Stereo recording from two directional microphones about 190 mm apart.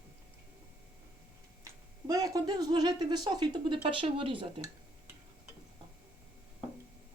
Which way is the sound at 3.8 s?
25° right (ahead or behind).